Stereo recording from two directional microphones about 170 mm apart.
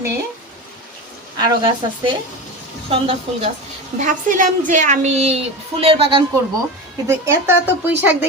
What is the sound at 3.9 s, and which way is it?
A woman's voice, 50° right (ahead or behind).